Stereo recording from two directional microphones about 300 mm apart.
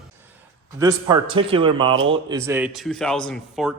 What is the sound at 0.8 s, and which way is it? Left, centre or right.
A man's voice, centre.